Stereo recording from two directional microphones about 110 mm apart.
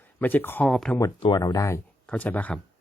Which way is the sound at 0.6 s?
Centre (ahead or behind).